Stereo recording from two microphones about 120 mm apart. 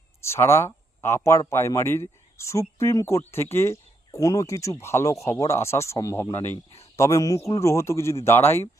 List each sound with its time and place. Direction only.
0.2 s speech: 20° left (ahead or behind)